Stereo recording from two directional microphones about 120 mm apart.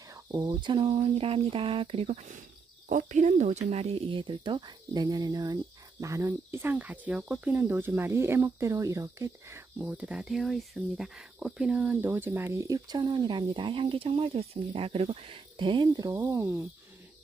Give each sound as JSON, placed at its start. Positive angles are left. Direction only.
{"t": 0.1, "sound": "speech", "side_deg": -30}
{"t": 9.8, "sound": "speech", "side_deg": -10}
{"t": 16.3, "sound": "speech", "side_deg": -25}